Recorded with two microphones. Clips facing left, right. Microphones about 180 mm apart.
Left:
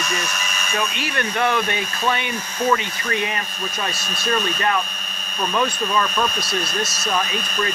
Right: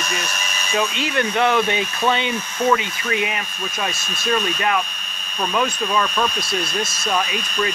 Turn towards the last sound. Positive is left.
turn(degrees=-5)  # may be behind; listen again after turning